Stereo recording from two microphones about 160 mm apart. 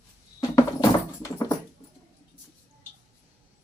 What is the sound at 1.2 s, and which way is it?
Dog, 20° left (ahead or behind).